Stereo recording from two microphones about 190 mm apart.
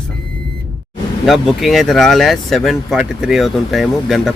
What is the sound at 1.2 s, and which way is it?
Speech, centre (ahead or behind).